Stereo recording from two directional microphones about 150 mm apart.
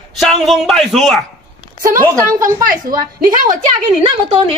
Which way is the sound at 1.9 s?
20° right (ahead or behind).